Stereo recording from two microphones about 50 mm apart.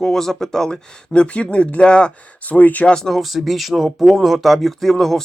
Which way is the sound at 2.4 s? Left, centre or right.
Left.